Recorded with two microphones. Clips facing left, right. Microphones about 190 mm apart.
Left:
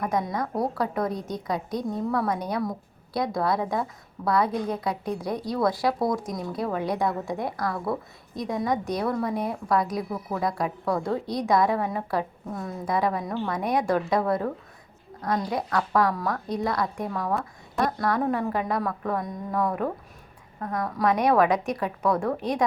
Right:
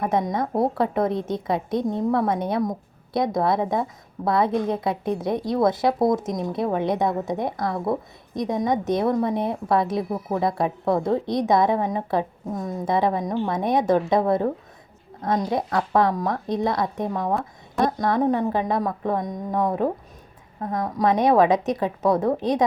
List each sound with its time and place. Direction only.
0.0 s a woman's voice: 25° right (ahead or behind)